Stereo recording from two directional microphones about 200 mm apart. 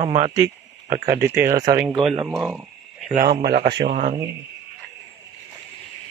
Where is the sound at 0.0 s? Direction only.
35° right (ahead or behind).